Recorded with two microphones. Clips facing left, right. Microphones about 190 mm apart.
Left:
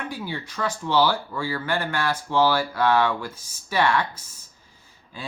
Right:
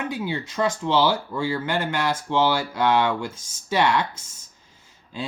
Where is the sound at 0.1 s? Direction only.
20° right (ahead or behind).